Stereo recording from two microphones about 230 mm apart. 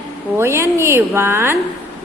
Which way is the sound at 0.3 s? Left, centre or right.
Centre.